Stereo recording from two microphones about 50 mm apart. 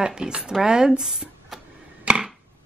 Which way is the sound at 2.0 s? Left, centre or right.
Right.